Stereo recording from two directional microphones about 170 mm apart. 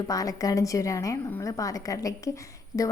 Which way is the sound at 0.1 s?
20° left (ahead or behind).